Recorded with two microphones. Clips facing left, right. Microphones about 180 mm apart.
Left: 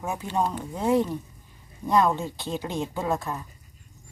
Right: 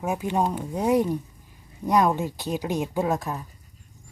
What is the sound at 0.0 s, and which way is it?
Speech, 15° right (ahead or behind).